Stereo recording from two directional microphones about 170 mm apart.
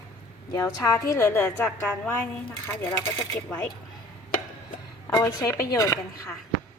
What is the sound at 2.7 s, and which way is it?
Speech, 15° left (ahead or behind).